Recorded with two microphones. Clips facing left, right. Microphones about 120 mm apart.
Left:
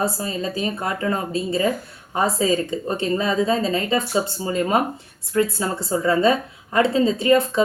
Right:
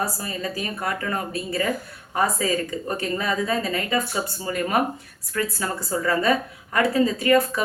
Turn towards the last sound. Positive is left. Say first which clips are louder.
# left 2 dB
turn(degrees=25)  # may be behind; listen again after turning